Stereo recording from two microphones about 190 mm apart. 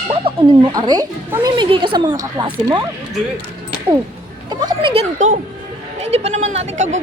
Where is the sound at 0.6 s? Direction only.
20° right (ahead or behind).